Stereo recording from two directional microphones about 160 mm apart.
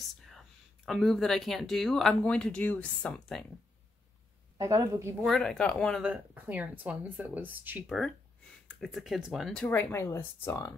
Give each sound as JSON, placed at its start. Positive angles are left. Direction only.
{"t": 0.0, "sound": "speech", "side_deg": 0}
{"t": 4.6, "sound": "speech", "side_deg": -20}
{"t": 5.2, "sound": "speech", "side_deg": 5}
{"t": 6.0, "sound": "speech", "side_deg": -10}
{"t": 8.6, "sound": "speech", "side_deg": 0}